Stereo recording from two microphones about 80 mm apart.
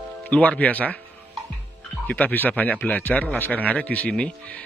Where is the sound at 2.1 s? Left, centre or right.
Left.